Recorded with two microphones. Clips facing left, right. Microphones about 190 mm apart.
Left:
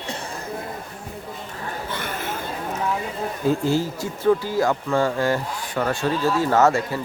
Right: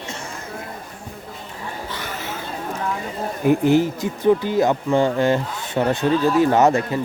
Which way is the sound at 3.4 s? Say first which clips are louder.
Right 5 dB; 15° right (ahead or behind).